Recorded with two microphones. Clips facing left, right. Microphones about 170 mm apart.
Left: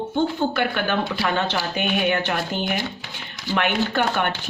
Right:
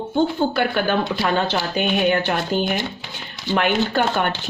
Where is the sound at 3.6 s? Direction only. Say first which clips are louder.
Right 2 dB; 35° right (ahead or behind).